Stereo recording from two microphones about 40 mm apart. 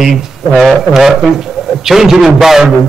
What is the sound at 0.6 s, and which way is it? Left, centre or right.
A man's voice, centre.